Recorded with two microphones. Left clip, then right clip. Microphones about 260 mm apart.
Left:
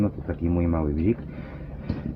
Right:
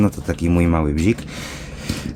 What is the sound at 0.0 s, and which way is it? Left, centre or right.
Speech, right.